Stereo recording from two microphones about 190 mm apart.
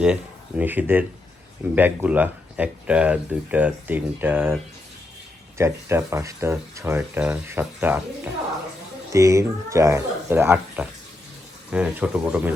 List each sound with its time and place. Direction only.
0.0 s speech: 5° right (ahead or behind)
5.5 s speech: 15° right (ahead or behind)